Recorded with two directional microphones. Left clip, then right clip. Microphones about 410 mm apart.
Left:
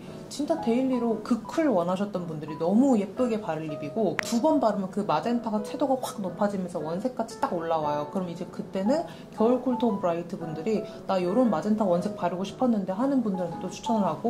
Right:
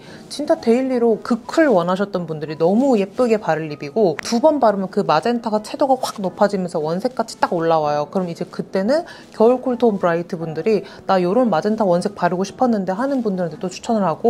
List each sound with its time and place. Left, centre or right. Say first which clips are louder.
0.5 s a woman's voice: right 10 dB; right